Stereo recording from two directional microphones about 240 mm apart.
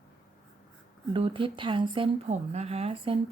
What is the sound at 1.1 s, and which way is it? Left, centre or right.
Speech, right.